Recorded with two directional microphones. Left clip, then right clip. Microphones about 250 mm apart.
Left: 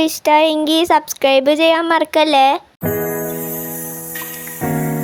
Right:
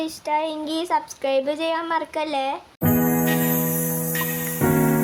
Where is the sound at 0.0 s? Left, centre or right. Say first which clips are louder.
Left 11 dB; left.